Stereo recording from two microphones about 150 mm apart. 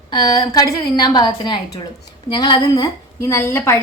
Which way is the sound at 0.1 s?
30° left (ahead or behind).